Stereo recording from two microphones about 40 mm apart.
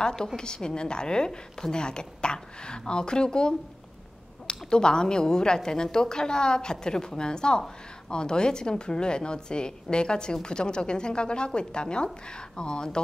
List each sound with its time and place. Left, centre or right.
0.0 s a woman's voice: centre